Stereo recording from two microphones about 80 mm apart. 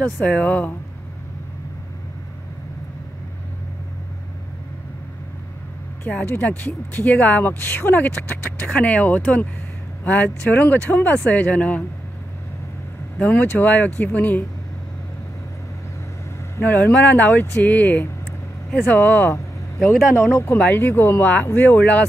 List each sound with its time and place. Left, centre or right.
0.0 s speech: centre
6.2 s speech: left
13.2 s speech: left
16.5 s speech: left
19.8 s speech: centre
20.2 s speech: left
20.5 s speech: left